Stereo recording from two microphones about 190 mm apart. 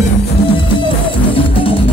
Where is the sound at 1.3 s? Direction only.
30° left (ahead or behind).